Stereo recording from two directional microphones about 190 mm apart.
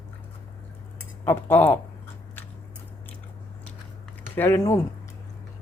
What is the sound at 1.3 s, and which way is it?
Cutlery, 10° left (ahead or behind).